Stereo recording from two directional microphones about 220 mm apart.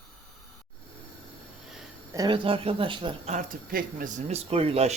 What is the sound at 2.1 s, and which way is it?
Speech, 20° right (ahead or behind).